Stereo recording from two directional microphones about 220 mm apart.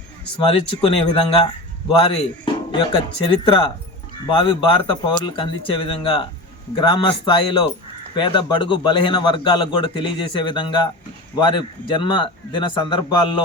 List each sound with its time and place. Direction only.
0.8 s a man's voice: 25° left (ahead or behind)